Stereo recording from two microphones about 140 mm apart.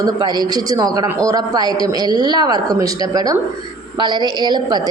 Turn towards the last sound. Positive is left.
turn(degrees=-30)  # may be behind; listen again after turning